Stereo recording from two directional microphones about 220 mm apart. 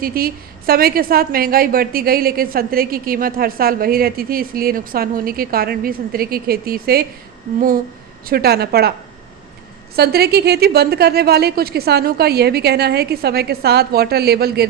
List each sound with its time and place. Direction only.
0.0 s a woman's voice: 45° right (ahead or behind)
8.3 s a woman's voice: 45° right (ahead or behind)
9.9 s a woman's voice: 45° right (ahead or behind)